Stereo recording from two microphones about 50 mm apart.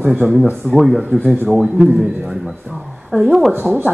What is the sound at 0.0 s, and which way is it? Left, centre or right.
Speech, right.